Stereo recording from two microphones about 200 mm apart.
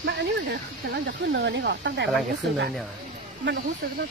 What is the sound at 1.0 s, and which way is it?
Speech, 60° right (ahead or behind).